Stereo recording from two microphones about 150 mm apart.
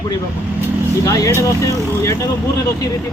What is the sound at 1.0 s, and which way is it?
Speech, 20° left (ahead or behind).